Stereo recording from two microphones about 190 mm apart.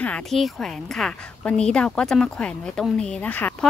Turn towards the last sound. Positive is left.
turn(degrees=5)  # may be behind; listen again after turning